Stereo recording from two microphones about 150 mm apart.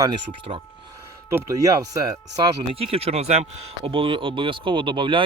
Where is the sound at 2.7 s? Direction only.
40° right (ahead or behind).